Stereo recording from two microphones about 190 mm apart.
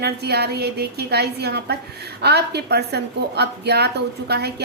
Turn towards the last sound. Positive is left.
turn(degrees=-60)  # may be behind; listen again after turning